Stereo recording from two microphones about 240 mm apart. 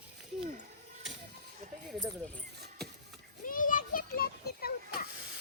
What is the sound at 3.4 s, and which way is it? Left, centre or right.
Children playing, left.